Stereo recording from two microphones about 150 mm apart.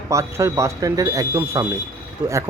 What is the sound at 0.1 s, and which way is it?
Speech, 20° right (ahead or behind).